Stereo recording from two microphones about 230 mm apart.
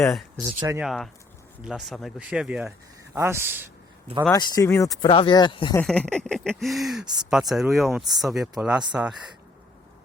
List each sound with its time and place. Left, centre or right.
0.1 s speech: centre
4.3 s speech: centre
5.8 s speech: centre